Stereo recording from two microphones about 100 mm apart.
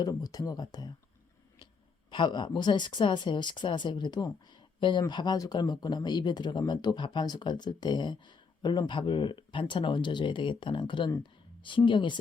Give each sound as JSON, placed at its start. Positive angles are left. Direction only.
{"t": 0.0, "sound": "speech", "side_deg": 40}
{"t": 2.0, "sound": "speech", "side_deg": 50}